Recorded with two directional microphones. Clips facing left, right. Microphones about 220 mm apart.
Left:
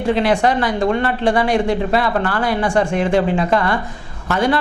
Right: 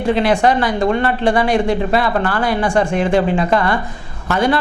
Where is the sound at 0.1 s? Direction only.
20° right (ahead or behind).